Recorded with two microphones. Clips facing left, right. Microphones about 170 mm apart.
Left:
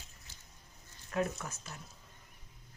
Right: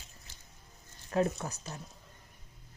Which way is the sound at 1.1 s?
30° right (ahead or behind).